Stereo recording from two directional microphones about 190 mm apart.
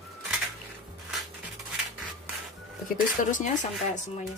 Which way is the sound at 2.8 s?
40° left (ahead or behind).